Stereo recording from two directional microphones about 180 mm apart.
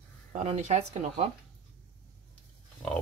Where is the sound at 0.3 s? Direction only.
35° right (ahead or behind).